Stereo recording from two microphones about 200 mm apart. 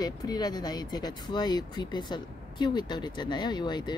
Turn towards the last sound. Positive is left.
turn(degrees=20)  # may be behind; listen again after turning